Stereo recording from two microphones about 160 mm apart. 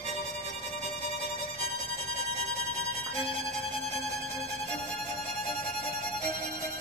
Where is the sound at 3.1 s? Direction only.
35° left (ahead or behind).